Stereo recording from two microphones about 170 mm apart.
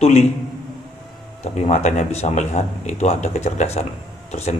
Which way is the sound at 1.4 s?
40° left (ahead or behind).